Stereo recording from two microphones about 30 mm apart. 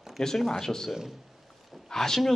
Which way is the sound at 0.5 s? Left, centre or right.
Centre.